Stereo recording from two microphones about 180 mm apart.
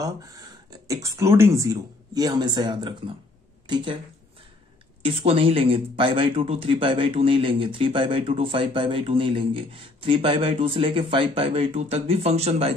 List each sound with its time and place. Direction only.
0.0 s speech: 20° right (ahead or behind)
5.0 s speech: 30° right (ahead or behind)